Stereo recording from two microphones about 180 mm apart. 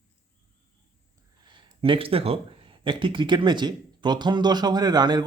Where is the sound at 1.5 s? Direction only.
30° right (ahead or behind).